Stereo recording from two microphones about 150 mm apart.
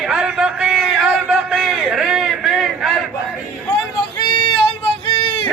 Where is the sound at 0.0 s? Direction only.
5° right (ahead or behind).